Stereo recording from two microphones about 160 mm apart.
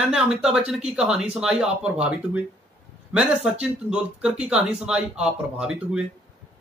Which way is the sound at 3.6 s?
5° right (ahead or behind).